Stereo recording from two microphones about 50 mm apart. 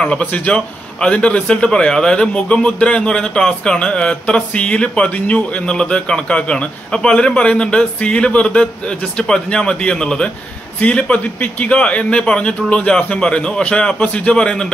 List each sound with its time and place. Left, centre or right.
0.2 s a man's voice: left
14.3 s speech: centre